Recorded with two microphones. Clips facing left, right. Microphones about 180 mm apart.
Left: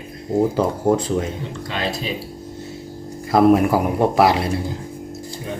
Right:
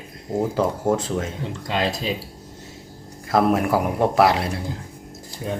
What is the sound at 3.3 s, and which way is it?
A man's voice, centre (ahead or behind).